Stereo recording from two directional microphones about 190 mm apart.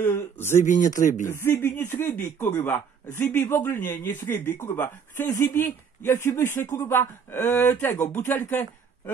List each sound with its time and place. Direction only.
0.0 s speech: 10° left (ahead or behind)
0.7 s speech: 40° left (ahead or behind)
1.2 s speech: 15° left (ahead or behind)